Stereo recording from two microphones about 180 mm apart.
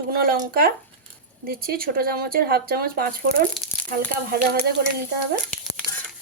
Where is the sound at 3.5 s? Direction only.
Centre (ahead or behind).